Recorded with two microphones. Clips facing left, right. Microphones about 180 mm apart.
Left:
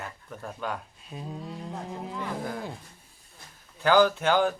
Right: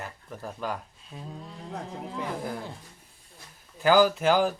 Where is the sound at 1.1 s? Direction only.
15° left (ahead or behind).